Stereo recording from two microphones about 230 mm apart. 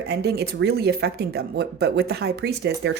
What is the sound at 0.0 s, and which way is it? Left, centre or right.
A woman's voice, right.